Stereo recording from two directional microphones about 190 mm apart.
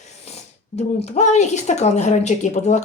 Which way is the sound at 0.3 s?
35° left (ahead or behind).